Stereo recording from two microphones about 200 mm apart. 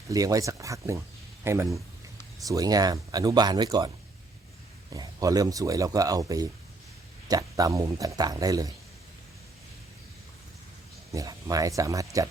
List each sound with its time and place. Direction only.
0.1 s a man's voice: 15° right (ahead or behind)
11.1 s a man's voice: 15° right (ahead or behind)